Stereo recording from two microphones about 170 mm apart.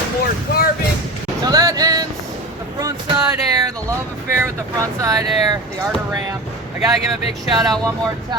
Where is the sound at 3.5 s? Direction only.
20° right (ahead or behind).